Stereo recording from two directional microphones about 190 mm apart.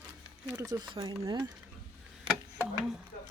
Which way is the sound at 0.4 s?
15° right (ahead or behind).